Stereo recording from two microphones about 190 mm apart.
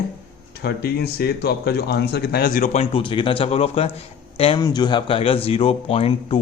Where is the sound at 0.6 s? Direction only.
55° left (ahead or behind).